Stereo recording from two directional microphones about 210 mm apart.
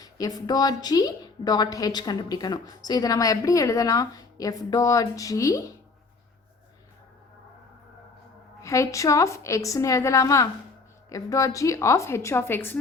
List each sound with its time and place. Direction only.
0.0 s a woman's voice: 20° left (ahead or behind)
8.6 s a woman's voice: 15° left (ahead or behind)